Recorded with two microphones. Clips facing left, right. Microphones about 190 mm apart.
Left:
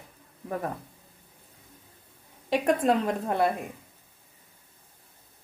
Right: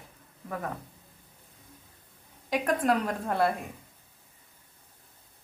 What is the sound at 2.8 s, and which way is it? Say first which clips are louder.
Speech: left 2 dB; 25° left (ahead or behind).